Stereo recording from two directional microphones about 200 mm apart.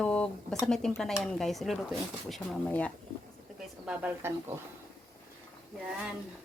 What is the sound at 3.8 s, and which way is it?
Speech, 5° right (ahead or behind).